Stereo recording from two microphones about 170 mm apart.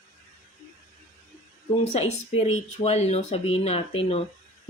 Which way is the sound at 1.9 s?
35° left (ahead or behind).